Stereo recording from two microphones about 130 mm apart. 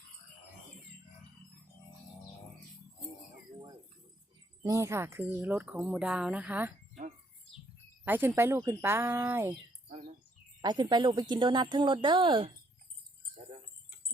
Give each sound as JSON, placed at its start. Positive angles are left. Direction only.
{"t": 4.6, "sound": "speech", "side_deg": -25}
{"t": 8.0, "sound": "speech", "side_deg": -15}
{"t": 10.6, "sound": "speech", "side_deg": -35}